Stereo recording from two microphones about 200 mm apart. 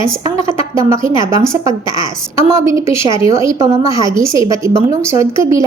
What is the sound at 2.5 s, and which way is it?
A woman's voice, 15° right (ahead or behind).